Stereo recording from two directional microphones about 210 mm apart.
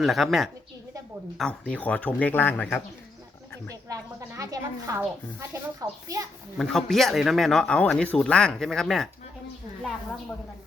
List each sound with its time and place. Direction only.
0.0 s speech: centre (ahead or behind)
3.8 s speech: 15° right (ahead or behind)
6.6 s speech: centre (ahead or behind)